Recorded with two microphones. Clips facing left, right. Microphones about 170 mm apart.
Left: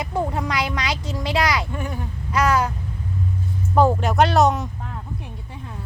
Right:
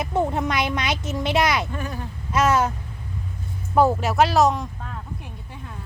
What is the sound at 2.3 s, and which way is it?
Speech, 25° right (ahead or behind).